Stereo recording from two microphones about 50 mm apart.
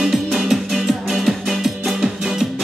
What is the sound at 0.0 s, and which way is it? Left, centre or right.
Music, centre.